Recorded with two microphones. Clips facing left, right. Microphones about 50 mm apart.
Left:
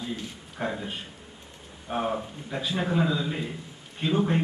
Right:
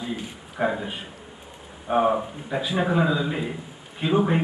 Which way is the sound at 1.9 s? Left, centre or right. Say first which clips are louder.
Right 8 dB; centre.